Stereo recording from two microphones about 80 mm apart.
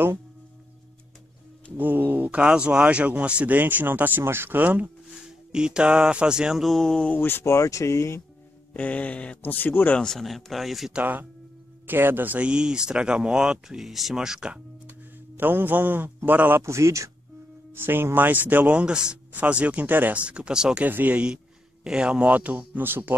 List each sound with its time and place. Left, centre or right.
1.8 s speech: right
5.5 s speech: centre
6.6 s speech: centre
7.1 s speech: left
8.7 s speech: centre
9.9 s speech: centre
11.0 s speech: right
15.3 s speech: right
16.6 s speech: right
17.7 s speech: right